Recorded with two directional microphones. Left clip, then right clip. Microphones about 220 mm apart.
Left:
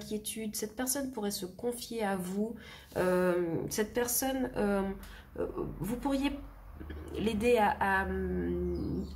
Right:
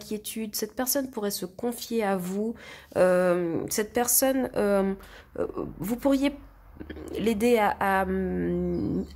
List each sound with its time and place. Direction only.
0.1 s speech: 40° right (ahead or behind)